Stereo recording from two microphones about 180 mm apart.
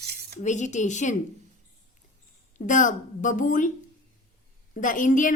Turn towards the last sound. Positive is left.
turn(degrees=45)  # may be behind; listen again after turning